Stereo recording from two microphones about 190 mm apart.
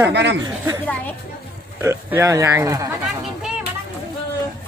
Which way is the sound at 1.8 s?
15° right (ahead or behind).